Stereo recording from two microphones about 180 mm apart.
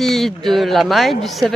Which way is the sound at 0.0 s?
Centre (ahead or behind).